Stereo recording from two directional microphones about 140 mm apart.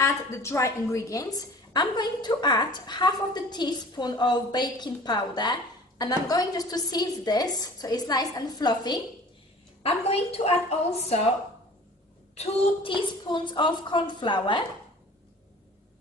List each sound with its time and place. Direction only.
0.0 s a woman's voice: 20° left (ahead or behind)
9.8 s a woman's voice: 50° left (ahead or behind)
12.4 s a woman's voice: 35° left (ahead or behind)